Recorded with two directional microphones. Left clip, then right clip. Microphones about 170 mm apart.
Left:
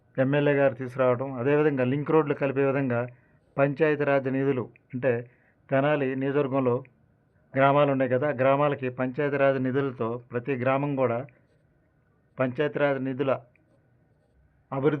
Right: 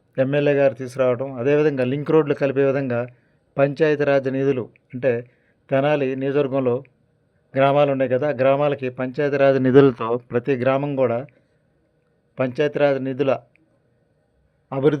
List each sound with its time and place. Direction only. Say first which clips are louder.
0.1 s a man's voice: right 5 dB; 25° right (ahead or behind)
9.6 s speech: right 13 dB; 60° right (ahead or behind)
10.2 s speech: right 8 dB; 40° right (ahead or behind)
14.7 s a man's voice: right 7 dB; 35° right (ahead or behind)